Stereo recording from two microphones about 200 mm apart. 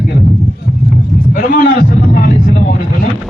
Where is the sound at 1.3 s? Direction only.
45° left (ahead or behind).